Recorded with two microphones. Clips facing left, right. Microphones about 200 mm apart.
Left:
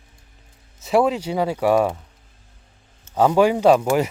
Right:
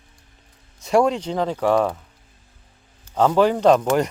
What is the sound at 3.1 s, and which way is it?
Speech, 10° left (ahead or behind).